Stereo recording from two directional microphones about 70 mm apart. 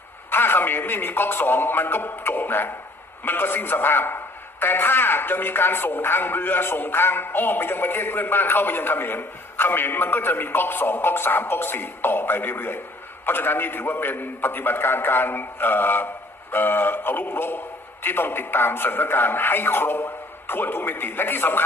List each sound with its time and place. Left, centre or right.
0.3 s speech: left
16.5 s synthetic singing: left
18.0 s speech: left